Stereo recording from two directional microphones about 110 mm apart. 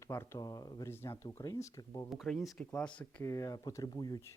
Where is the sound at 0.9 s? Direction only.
25° left (ahead or behind).